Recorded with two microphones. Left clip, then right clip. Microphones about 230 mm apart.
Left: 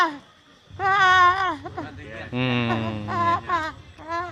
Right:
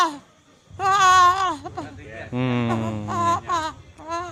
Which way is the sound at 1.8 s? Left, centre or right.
Left.